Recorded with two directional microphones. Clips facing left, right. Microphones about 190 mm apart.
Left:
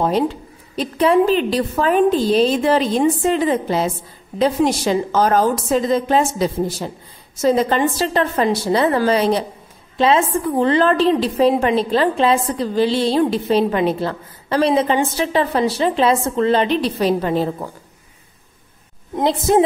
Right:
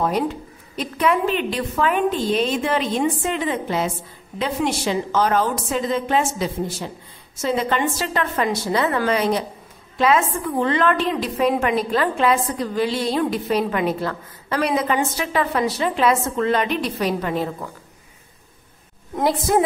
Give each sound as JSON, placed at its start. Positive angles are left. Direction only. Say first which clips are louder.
{"t": 0.7, "sound": "a woman's voice", "louder": "left 6 dB", "side_deg": 30}
{"t": 19.1, "sound": "a woman's voice", "louder": "left 3 dB", "side_deg": 20}